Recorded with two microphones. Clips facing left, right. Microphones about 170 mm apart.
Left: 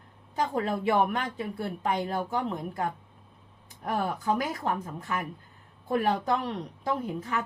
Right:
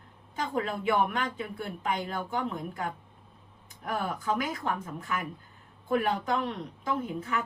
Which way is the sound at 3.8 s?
40° left (ahead or behind).